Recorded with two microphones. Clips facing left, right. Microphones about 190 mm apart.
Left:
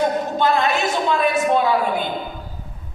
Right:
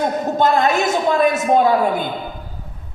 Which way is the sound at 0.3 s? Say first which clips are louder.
Right 5 dB; 45° right (ahead or behind).